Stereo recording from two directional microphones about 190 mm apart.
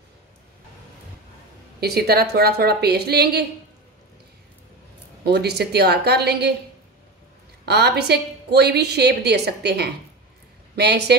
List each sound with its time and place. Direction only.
1.8 s a woman's voice: 55° right (ahead or behind)
5.2 s a woman's voice: 60° right (ahead or behind)
7.6 s a woman's voice: 60° right (ahead or behind)